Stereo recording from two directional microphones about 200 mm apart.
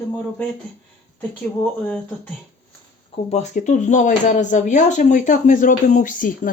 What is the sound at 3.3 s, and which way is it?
Speech, 35° left (ahead or behind).